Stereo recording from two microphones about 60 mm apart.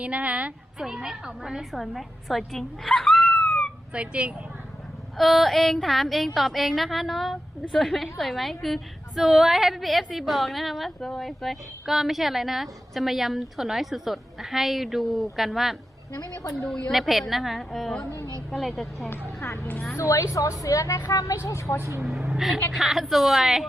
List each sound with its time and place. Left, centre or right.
0.0 s a woman's voice: right
0.8 s a woman's voice: centre
1.7 s a woman's voice: centre
2.8 s a sound: centre
3.9 s a woman's voice: right
5.1 s a woman's voice: centre
16.1 s a woman's voice: left
16.9 s a woman's voice: centre
19.4 s speech: left
20.0 s a woman's voice: left
21.4 s speech: left
21.8 s speech: right
22.0 s a woman's voice: centre